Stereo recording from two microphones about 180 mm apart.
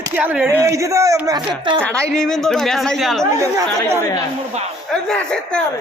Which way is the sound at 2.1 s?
Centre (ahead or behind).